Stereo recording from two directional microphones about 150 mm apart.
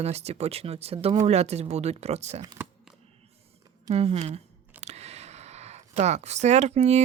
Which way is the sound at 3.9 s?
45° right (ahead or behind).